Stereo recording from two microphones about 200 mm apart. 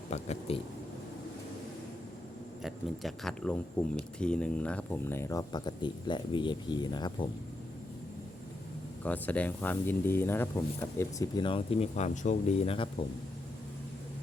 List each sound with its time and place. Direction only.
0.1 s speech: 30° left (ahead or behind)
2.6 s speech: centre (ahead or behind); by 7.3 s 20° left (ahead or behind)
9.0 s speech: 10° left (ahead or behind); by 12.9 s 30° left (ahead or behind)